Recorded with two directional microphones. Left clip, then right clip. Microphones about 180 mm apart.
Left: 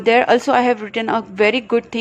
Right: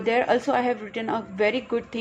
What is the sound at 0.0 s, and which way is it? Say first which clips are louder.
A woman's voice: left 8 dB; 35° left (ahead or behind).